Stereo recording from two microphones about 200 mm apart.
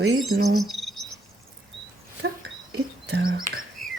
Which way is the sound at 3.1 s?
50° right (ahead or behind).